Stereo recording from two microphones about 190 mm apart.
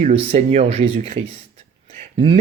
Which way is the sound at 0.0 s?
35° right (ahead or behind).